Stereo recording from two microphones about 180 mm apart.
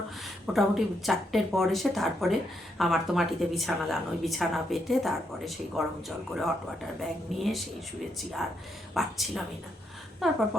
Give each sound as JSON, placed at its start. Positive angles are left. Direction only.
{"t": 0.4, "sound": "speech", "side_deg": 0}
{"t": 9.0, "sound": "speech", "side_deg": 0}